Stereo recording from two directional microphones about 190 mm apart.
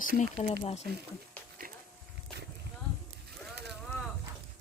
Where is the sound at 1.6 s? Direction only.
45° right (ahead or behind).